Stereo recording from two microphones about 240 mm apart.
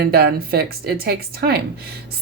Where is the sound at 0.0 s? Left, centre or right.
Right.